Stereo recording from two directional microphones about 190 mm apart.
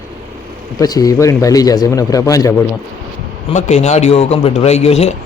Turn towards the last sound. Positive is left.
turn(degrees=35)  # may be behind; listen again after turning